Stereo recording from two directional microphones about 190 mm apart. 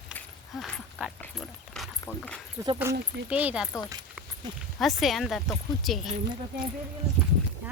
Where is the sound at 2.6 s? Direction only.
15° right (ahead or behind).